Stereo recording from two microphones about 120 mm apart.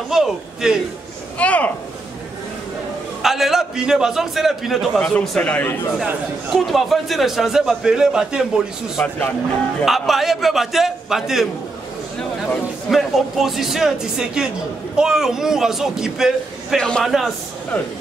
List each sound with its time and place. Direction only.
0.1 s a man's voice: 5° right (ahead or behind)
1.4 s speech: 10° left (ahead or behind)
3.2 s a man's voice: centre (ahead or behind)
5.9 s a man's voice: centre (ahead or behind)